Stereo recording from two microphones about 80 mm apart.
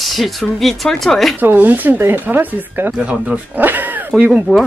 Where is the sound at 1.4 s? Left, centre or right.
Right.